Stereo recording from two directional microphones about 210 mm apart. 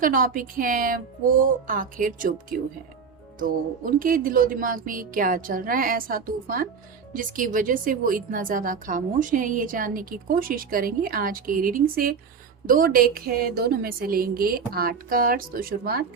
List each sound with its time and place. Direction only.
0.0 s a woman's voice: 40° right (ahead or behind)